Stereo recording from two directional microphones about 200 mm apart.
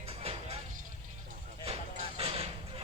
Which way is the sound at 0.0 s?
30° right (ahead or behind).